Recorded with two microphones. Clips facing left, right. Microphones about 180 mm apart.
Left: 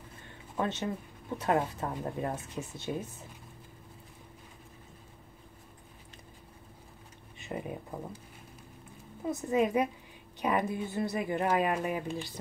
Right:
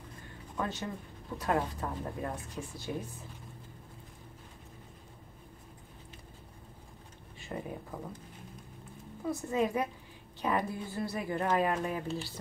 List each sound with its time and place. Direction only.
0.6 s speech: 25° left (ahead or behind)
7.3 s speech: 15° left (ahead or behind)
9.2 s speech: 20° left (ahead or behind)